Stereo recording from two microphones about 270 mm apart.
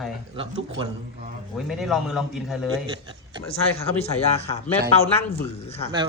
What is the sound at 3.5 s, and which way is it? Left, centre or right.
Speech, left.